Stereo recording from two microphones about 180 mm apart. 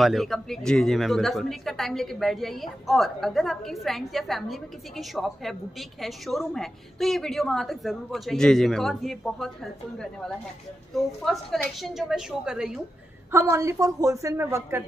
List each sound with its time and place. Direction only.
0.0 s speech: centre (ahead or behind)
10.9 s speech: centre (ahead or behind)
13.3 s a woman's voice: 15° right (ahead or behind)